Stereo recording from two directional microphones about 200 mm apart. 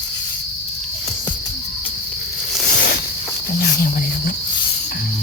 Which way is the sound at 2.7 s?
55° left (ahead or behind).